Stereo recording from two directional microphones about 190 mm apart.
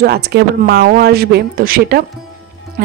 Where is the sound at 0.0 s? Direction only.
60° right (ahead or behind).